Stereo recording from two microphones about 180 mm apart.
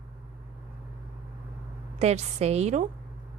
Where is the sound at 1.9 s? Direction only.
35° right (ahead or behind).